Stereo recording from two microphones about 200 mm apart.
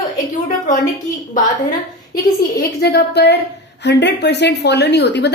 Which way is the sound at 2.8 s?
55° left (ahead or behind).